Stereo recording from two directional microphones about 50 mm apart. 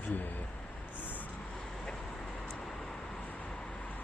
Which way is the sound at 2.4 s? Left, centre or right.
Left.